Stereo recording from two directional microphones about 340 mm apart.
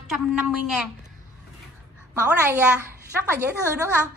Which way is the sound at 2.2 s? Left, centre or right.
Centre.